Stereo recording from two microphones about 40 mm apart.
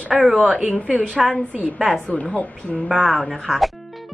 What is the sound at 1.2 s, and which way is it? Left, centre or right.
Speech, centre.